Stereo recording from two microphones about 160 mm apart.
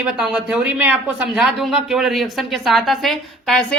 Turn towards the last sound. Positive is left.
turn(degrees=0)  # may be behind; listen again after turning